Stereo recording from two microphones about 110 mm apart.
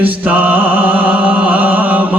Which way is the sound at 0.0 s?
15° right (ahead or behind).